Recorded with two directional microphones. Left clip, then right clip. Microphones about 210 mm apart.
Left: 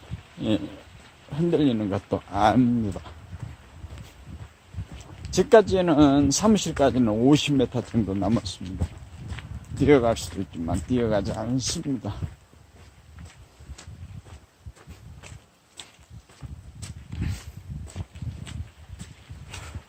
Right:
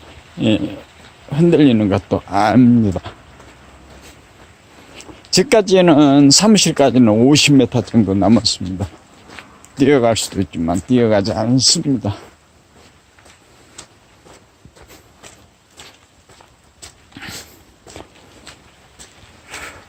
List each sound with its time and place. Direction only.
1.3 s speech: 35° right (ahead or behind)
5.3 s speech: 35° right (ahead or behind)
8.2 s speech: 35° right (ahead or behind)
9.8 s speech: 30° right (ahead or behind)
15.8 s a sound: 5° left (ahead or behind)